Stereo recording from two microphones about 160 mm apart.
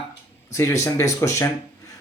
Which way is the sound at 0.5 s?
20° left (ahead or behind).